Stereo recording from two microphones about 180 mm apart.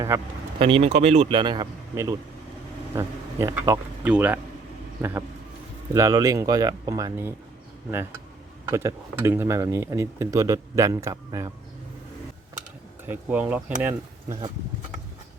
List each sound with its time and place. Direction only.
0.6 s speech: 30° right (ahead or behind); by 4.4 s 10° right (ahead or behind)
5.9 s speech: 20° right (ahead or behind)
8.6 s speech: 15° right (ahead or behind)
13.1 s speech: 10° right (ahead or behind)